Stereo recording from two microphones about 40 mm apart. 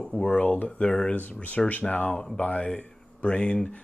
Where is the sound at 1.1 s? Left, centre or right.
Left.